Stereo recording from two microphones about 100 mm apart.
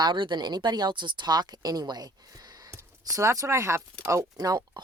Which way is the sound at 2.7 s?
30° right (ahead or behind).